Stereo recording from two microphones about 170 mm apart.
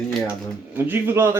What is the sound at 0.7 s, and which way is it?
Speech, 10° right (ahead or behind).